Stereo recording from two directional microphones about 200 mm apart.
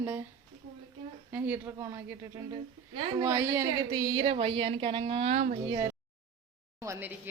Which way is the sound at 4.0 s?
25° right (ahead or behind).